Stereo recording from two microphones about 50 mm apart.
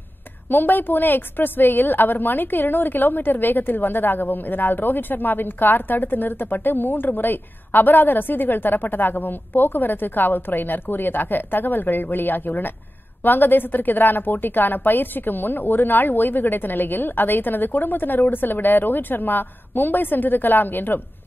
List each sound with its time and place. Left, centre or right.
0.5 s a woman's voice: left